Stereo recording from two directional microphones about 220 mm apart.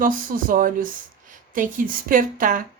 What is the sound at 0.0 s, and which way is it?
A woman's voice, 40° right (ahead or behind).